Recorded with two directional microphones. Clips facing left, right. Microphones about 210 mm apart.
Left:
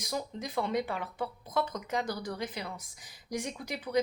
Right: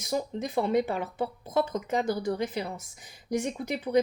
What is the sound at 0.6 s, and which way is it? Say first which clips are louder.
Speech: right 6 dB; 40° right (ahead or behind).